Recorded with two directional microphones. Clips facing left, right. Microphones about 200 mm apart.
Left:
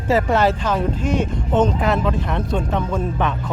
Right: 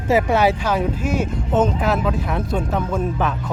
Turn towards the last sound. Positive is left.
turn(degrees=-5)  # may be behind; listen again after turning